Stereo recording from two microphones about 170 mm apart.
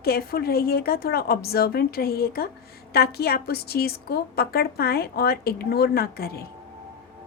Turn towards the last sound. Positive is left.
turn(degrees=65)  # may be behind; listen again after turning